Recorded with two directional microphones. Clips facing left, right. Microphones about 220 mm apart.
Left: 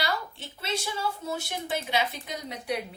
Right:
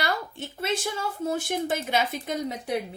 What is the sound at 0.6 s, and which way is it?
A woman's voice, 50° right (ahead or behind).